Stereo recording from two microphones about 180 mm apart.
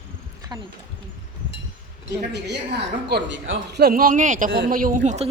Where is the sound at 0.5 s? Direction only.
20° right (ahead or behind).